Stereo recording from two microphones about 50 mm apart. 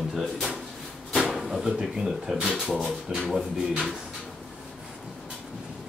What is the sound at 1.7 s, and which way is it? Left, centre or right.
Speech, centre.